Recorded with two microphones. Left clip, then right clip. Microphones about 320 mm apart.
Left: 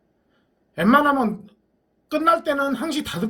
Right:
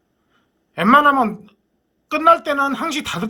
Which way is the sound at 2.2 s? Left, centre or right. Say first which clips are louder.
Right 5 dB; right.